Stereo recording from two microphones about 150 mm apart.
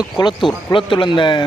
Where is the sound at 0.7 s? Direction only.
35° left (ahead or behind).